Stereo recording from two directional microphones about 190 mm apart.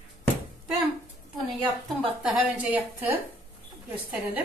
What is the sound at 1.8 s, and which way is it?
A woman's voice, 5° right (ahead or behind).